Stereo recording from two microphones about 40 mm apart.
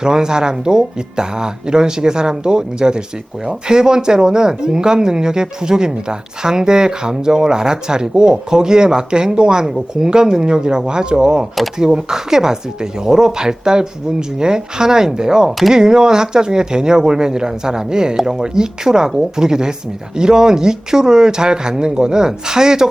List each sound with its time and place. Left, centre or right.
0.0 s speech: centre